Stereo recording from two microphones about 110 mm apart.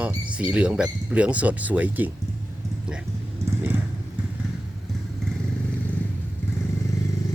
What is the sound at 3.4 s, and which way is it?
Vehicle, 20° right (ahead or behind).